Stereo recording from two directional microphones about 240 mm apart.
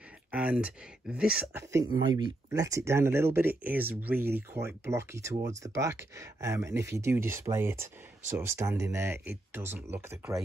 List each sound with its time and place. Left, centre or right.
0.3 s speech: centre